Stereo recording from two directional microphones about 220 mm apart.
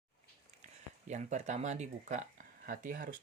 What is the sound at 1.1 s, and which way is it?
Speech, 30° right (ahead or behind).